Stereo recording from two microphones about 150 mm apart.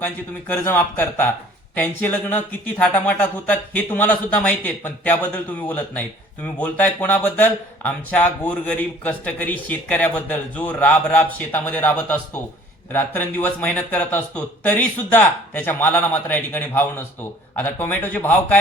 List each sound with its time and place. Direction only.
0.0 s speech: 15° left (ahead or behind)